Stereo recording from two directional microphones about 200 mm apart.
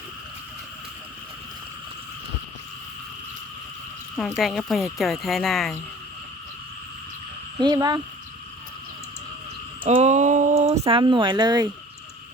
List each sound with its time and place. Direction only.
4.2 s speech: centre (ahead or behind)
7.6 s speech: 20° right (ahead or behind)
9.8 s speech: 35° right (ahead or behind); by 11.7 s 20° right (ahead or behind)